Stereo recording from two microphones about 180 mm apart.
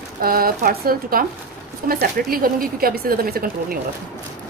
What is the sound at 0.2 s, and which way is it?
A woman's voice, 55° right (ahead or behind).